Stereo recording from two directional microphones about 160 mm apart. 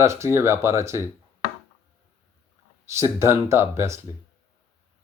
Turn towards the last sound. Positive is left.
turn(degrees=-15)  # may be behind; listen again after turning